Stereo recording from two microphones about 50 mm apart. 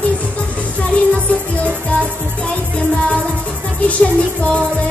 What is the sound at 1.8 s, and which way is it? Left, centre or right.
Music, left.